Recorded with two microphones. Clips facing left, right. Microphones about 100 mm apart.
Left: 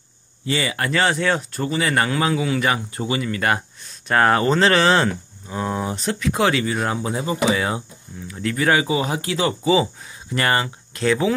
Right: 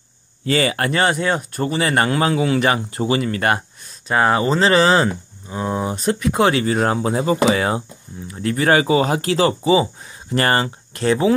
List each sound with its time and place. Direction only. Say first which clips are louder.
0.5 s speech: right 5 dB; 50° right (ahead or behind)
1.1 s speech: right 1 dB; 15° right (ahead or behind)
1.7 s speech: right 2 dB; 45° right (ahead or behind)
4.1 s speech: even; 15° right (ahead or behind)
5.9 s speech: right 6 dB; 40° right (ahead or behind)
7.5 s speech: right 3 dB; 40° right (ahead or behind)
8.8 s speech: right 5 dB; 55° right (ahead or behind); by 11.3 s 35° right (ahead or behind)